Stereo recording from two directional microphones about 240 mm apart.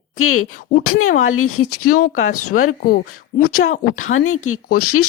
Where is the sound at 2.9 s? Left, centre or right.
Left.